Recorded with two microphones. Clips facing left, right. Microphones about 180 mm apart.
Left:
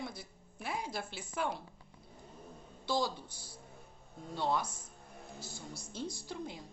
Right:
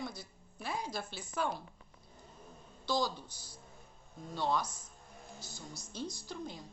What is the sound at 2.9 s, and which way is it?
A woman's voice, 25° left (ahead or behind).